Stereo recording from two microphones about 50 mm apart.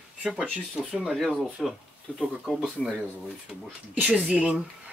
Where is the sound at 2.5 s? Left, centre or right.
Centre.